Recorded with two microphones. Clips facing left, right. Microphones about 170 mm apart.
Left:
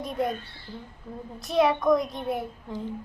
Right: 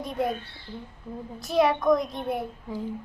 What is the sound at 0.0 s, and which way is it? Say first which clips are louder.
Speech: even; centre (ahead or behind).